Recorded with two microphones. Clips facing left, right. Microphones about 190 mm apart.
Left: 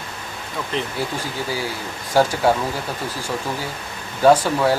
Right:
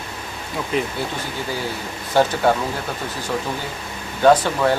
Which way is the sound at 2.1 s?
5° left (ahead or behind).